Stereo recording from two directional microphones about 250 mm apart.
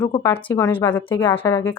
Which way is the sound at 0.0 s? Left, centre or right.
Centre.